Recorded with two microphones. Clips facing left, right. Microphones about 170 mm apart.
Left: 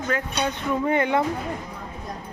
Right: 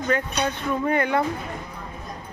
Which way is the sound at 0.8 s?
20° left (ahead or behind).